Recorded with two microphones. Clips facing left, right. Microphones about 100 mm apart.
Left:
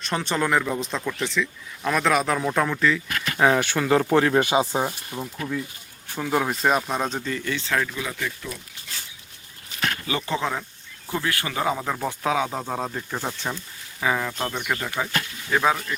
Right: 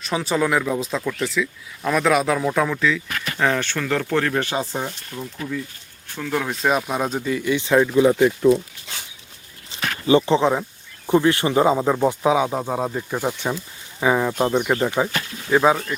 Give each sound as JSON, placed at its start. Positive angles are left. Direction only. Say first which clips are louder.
{"t": 0.0, "sound": "speech", "louder": "right 3 dB", "side_deg": -5}
{"t": 8.1, "sound": "speech", "louder": "right 14 dB", "side_deg": -35}
{"t": 9.6, "sound": "speech", "louder": "right 8 dB", "side_deg": -25}